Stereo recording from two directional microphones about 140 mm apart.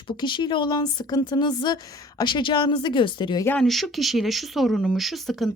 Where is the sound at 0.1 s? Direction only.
35° left (ahead or behind).